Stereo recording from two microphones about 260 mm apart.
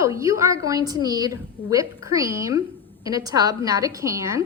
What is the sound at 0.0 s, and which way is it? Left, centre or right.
A woman's voice, centre.